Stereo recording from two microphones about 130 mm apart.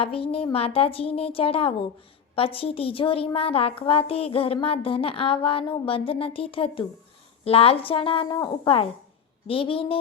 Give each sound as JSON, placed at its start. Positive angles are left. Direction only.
{"t": 0.0, "sound": "a woman's voice", "side_deg": 45}